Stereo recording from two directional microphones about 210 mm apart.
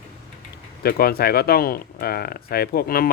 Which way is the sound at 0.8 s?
45° left (ahead or behind).